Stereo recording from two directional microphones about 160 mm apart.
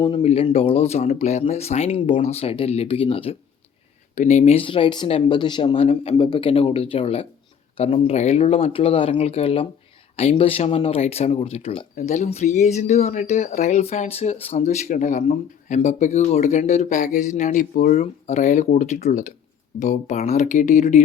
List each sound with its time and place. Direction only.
0.0 s speech: 35° left (ahead or behind)
4.1 s speech: 45° left (ahead or behind)
18.0 s speech: 45° left (ahead or behind)